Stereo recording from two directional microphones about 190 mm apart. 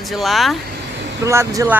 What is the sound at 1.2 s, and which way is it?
Speech, 15° right (ahead or behind).